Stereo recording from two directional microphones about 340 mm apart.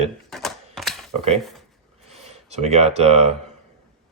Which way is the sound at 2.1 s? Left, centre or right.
Centre.